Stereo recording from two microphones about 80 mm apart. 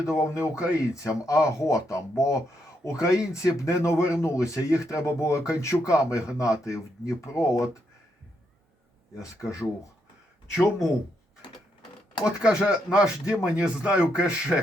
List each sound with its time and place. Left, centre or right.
0.0 s speech: left
0.5 s speech: centre
0.9 s speech: left
9.1 s speech: left
12.2 s speech: centre